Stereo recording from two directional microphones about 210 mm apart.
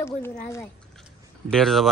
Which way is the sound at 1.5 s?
Centre (ahead or behind).